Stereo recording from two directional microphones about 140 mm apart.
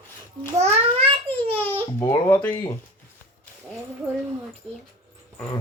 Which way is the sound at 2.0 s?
15° left (ahead or behind).